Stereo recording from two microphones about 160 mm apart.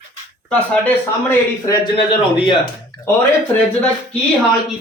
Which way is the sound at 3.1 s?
15° left (ahead or behind).